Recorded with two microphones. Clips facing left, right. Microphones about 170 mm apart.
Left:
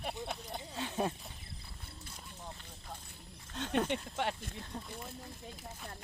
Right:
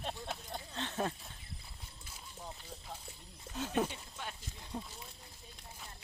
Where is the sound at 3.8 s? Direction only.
75° left (ahead or behind).